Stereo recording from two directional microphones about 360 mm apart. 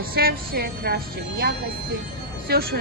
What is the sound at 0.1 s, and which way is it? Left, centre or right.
Speech, right.